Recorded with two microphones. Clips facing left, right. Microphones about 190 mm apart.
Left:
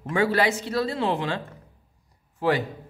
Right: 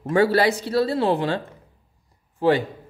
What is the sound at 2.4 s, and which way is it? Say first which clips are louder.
Speech: right 4 dB; 30° right (ahead or behind).